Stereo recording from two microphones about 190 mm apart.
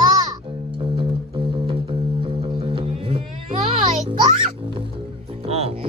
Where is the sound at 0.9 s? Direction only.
25° right (ahead or behind).